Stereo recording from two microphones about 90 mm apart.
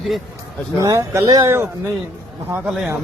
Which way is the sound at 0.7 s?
35° right (ahead or behind).